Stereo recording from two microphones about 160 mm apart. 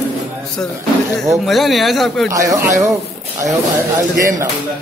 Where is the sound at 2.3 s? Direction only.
20° right (ahead or behind).